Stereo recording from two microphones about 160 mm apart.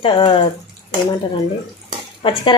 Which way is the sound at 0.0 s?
30° left (ahead or behind).